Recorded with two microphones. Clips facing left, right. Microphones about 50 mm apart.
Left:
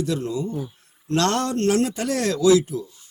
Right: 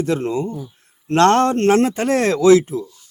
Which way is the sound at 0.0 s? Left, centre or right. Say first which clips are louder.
Right 5 dB; right.